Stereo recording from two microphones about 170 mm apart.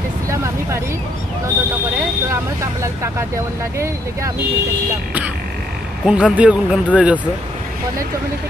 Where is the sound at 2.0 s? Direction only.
15° right (ahead or behind).